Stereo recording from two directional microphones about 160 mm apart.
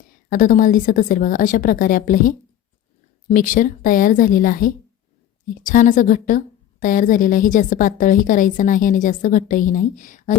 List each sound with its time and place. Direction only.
0.3 s a woman's voice: 60° left (ahead or behind)